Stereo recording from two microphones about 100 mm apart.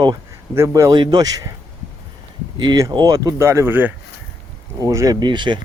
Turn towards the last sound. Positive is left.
turn(degrees=-50)  # may be behind; listen again after turning